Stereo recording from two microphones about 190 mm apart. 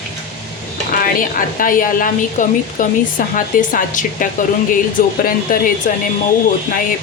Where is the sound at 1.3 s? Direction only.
45° left (ahead or behind).